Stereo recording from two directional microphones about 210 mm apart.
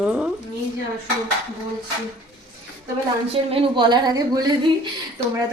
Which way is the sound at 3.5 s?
25° right (ahead or behind).